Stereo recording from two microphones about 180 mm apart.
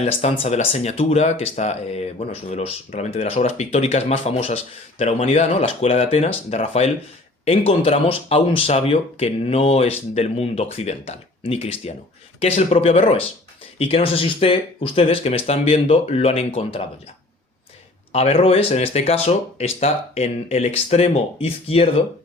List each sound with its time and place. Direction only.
0.0 s speech: 35° left (ahead or behind)
18.1 s speech: 35° left (ahead or behind)